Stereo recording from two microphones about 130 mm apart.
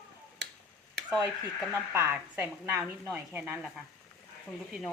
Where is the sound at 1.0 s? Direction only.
20° right (ahead or behind).